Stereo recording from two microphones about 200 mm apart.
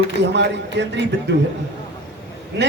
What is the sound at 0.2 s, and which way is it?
A man's voice, 60° right (ahead or behind).